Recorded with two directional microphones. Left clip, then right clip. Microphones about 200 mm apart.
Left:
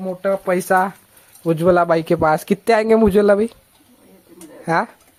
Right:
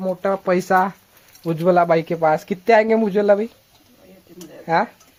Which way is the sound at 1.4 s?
10° left (ahead or behind).